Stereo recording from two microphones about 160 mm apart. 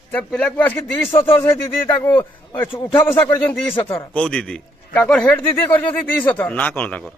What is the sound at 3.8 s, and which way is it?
Speech, 35° left (ahead or behind).